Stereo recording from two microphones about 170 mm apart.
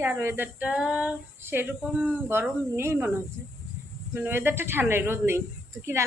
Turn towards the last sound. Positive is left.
turn(degrees=-15)  # may be behind; listen again after turning